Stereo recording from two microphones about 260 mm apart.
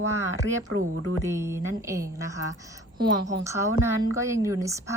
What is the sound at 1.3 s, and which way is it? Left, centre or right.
Speech, centre.